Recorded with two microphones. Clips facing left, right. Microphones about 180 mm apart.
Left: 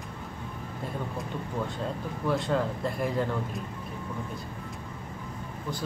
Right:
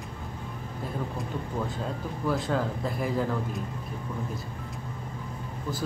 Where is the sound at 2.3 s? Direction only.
Centre (ahead or behind).